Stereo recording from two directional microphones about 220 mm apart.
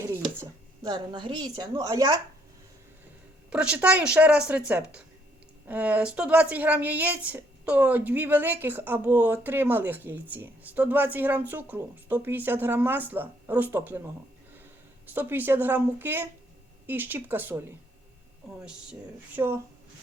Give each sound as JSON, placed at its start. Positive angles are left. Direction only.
{"t": 0.0, "sound": "speech", "side_deg": -10}
{"t": 3.5, "sound": "a woman's voice", "side_deg": -5}
{"t": 15.1, "sound": "a woman's voice", "side_deg": -10}
{"t": 18.6, "sound": "a woman's voice", "side_deg": -5}
{"t": 19.4, "sound": "a woman's voice", "side_deg": -15}